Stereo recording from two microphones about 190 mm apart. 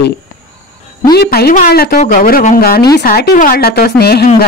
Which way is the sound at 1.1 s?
55° left (ahead or behind).